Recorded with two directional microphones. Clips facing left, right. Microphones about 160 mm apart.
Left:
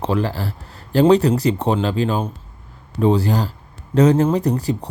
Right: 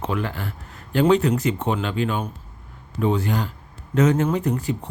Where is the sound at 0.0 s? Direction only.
35° left (ahead or behind).